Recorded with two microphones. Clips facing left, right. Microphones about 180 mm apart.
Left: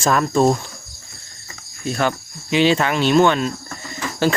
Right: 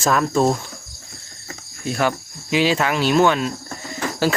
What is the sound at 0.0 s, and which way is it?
Cricket, centre (ahead or behind).